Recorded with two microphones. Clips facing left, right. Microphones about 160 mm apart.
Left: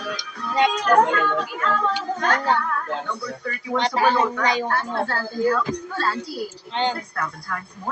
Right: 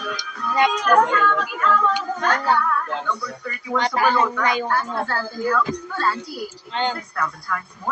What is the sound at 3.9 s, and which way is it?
A woman's voice, 25° left (ahead or behind).